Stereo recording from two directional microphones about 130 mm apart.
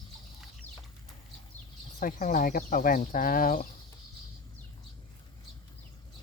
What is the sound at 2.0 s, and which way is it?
Speech, 90° left.